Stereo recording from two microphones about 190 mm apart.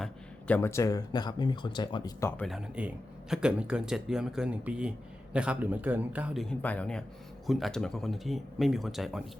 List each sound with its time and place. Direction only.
0.0 s speech: 10° left (ahead or behind)
2.4 s speech: 5° right (ahead or behind)